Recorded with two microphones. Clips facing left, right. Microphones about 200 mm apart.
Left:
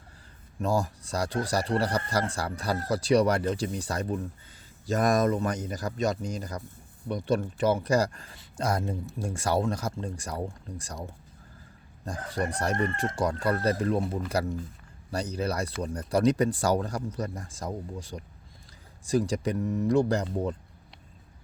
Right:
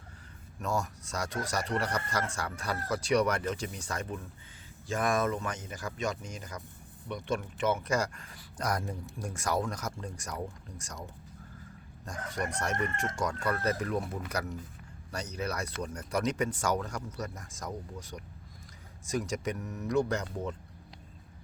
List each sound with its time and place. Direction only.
0.6 s speech: 35° left (ahead or behind)